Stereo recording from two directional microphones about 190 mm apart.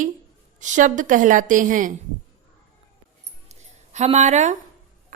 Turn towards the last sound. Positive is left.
turn(degrees=-40)  # may be behind; listen again after turning